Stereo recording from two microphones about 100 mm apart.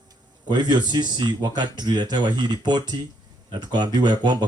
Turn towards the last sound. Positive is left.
turn(degrees=-50)  # may be behind; listen again after turning